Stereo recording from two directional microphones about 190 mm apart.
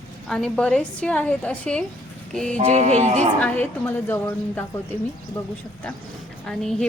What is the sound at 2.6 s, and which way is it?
Speech, 35° right (ahead or behind).